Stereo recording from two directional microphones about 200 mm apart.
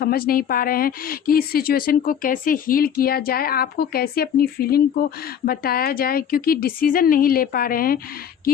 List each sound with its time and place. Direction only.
0.0 s a woman's voice: 50° left (ahead or behind)